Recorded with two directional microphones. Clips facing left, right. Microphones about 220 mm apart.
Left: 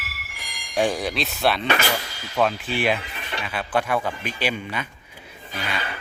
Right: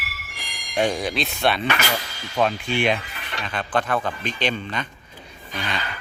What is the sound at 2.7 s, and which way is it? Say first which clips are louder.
Speech: right 2 dB; 5° left (ahead or behind).